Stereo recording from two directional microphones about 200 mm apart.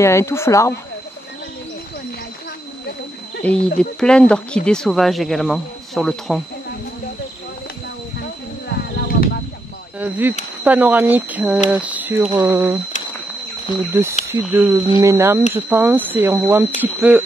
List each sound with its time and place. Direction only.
0.0 s speech: 15° left (ahead or behind)
3.4 s speech: 5° left (ahead or behind)
8.6 s a sound: 50° left (ahead or behind)
9.9 s speech: 10° right (ahead or behind)
13.7 s speech: 25° left (ahead or behind)
14.2 s speech: 10° right (ahead or behind)